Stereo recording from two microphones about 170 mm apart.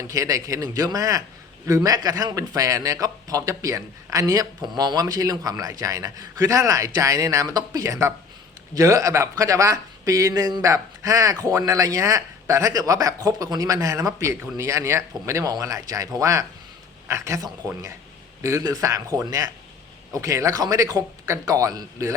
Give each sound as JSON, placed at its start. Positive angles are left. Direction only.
{"t": 0.1, "sound": "speech", "side_deg": -20}